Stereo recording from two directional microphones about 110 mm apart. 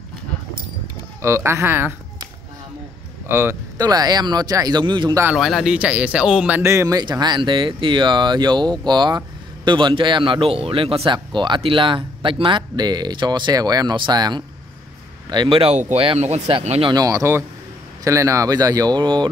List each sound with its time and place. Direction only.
1.2 s speech: 25° right (ahead or behind)
3.3 s speech: 20° right (ahead or behind)
3.7 s speech: 35° right (ahead or behind)
5.3 s speech: centre (ahead or behind)
6.6 s speech: 25° right (ahead or behind)
7.0 s speech: 40° right (ahead or behind)
15.3 s speech: 50° right (ahead or behind)
15.7 s speech: 90° right
16.2 s speech: 80° right
16.9 s speech: 30° right (ahead or behind)